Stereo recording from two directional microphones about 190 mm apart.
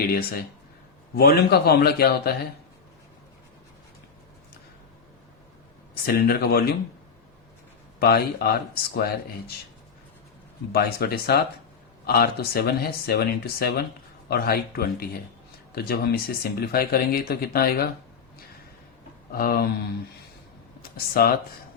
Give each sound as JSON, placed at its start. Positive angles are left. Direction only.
{"t": 0.1, "sound": "speech", "side_deg": 50}
{"t": 5.9, "sound": "speech", "side_deg": 50}
{"t": 7.9, "sound": "speech", "side_deg": 55}
{"t": 10.7, "sound": "speech", "side_deg": 55}
{"t": 19.3, "sound": "speech", "side_deg": 50}